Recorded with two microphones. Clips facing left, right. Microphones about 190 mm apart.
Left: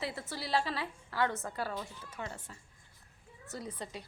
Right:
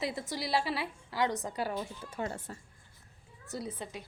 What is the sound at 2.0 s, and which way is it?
Speech, 35° right (ahead or behind).